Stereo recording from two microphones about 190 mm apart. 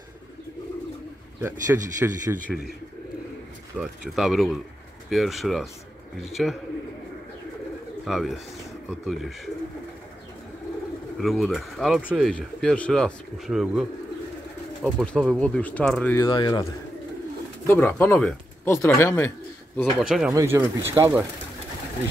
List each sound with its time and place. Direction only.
1.4 s speech: 15° right (ahead or behind)
3.7 s speech: 5° right (ahead or behind)
8.0 s speech: centre (ahead or behind)
11.1 s speech: centre (ahead or behind)
16.2 s speech: 20° left (ahead or behind)
17.6 s speech: 10° left (ahead or behind)
19.8 s speech: centre (ahead or behind)
20.3 s speech: 15° right (ahead or behind)